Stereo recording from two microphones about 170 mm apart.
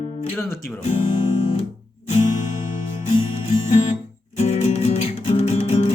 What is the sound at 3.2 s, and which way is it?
Music, 40° left (ahead or behind).